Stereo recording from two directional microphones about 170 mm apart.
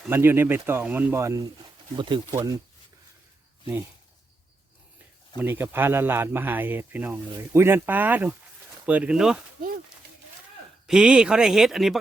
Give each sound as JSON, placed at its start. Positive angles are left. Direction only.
{"t": 0.0, "sound": "speech", "side_deg": -10}
{"t": 2.0, "sound": "speech", "side_deg": -30}
{"t": 5.4, "sound": "speech", "side_deg": -10}
{"t": 10.8, "sound": "speech", "side_deg": -5}